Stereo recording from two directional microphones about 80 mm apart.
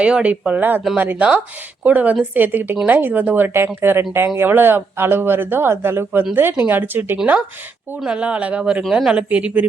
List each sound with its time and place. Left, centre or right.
0.0 s speech: centre
8.0 s speech: centre